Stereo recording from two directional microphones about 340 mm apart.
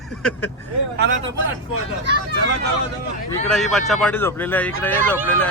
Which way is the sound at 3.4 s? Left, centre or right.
Centre.